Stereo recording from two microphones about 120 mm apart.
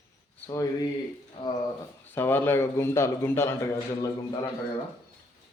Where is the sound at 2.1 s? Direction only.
15° left (ahead or behind).